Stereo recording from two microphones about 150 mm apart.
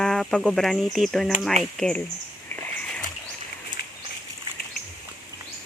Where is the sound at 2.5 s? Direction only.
5° left (ahead or behind).